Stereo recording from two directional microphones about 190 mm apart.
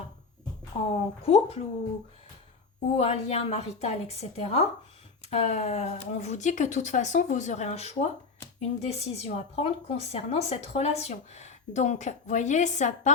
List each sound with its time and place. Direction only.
0.9 s a woman's voice: 30° left (ahead or behind)
2.9 s a woman's voice: 30° left (ahead or behind)